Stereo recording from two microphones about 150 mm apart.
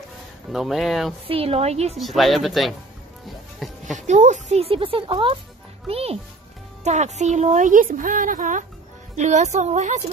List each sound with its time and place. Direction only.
0.5 s speech: centre (ahead or behind)
1.2 s speech: 40° right (ahead or behind)
2.0 s speech: centre (ahead or behind)
4.1 s a woman's voice: 50° right (ahead or behind)